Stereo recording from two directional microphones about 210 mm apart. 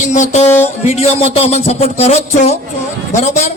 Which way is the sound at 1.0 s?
30° left (ahead or behind).